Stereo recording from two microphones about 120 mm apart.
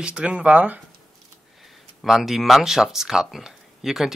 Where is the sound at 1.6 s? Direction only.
Centre (ahead or behind).